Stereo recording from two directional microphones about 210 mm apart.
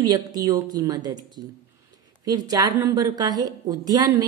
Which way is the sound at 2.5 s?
20° right (ahead or behind).